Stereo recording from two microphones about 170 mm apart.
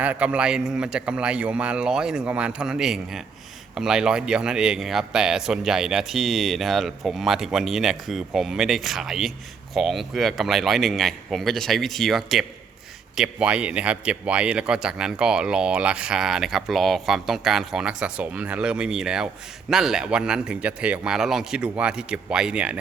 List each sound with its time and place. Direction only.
0.0 s speech: 10° right (ahead or behind)